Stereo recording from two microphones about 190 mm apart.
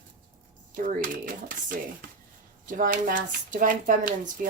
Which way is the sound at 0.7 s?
45° right (ahead or behind).